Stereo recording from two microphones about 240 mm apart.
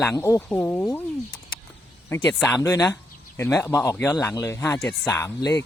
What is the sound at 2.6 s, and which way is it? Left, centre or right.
Speech, centre.